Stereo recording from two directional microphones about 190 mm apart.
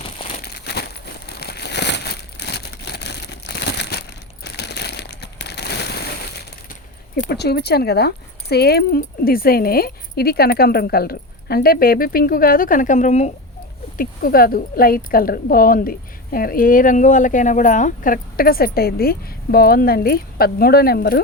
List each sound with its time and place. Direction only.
0.3 s crumpling: 60° left (ahead or behind)
4.4 s crushing: 60° left (ahead or behind)
7.3 s a woman's voice: 60° left (ahead or behind); by 13.3 s 40° left (ahead or behind)
13.9 s a woman's voice: 50° left (ahead or behind)